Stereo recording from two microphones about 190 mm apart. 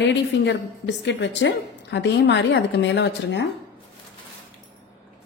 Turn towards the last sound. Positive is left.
turn(degrees=65)  # may be behind; listen again after turning